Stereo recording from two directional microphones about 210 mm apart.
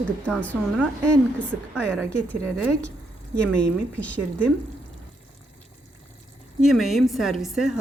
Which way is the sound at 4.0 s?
5° left (ahead or behind).